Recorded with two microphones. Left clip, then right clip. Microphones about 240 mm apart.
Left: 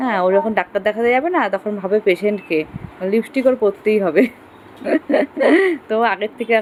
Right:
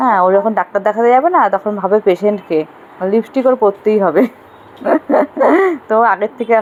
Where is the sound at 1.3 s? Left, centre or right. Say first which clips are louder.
Right 7 dB; centre.